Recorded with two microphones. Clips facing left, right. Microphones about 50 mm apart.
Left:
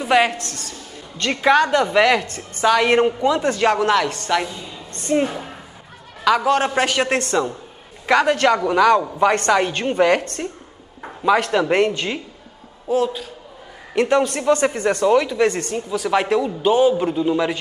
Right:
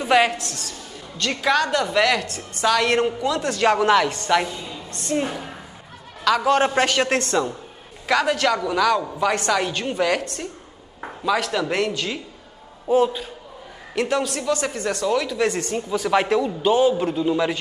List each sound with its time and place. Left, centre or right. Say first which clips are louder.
0.1 s a man's voice: left 1 dB; centre
1.1 s a woman's voice: left 5 dB; centre
3.6 s a man's voice: right 1 dB; centre
4.5 s a woman's voice: right 1 dB; centre
11.2 s speech: left 5 dB; centre
12.8 s a man's voice: right 1 dB; centre
13.9 s speech: left 5 dB; left
15.3 s a man's voice: left 3 dB; centre